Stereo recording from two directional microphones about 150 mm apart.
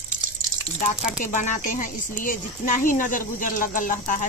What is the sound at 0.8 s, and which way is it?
Speech, 55° left (ahead or behind).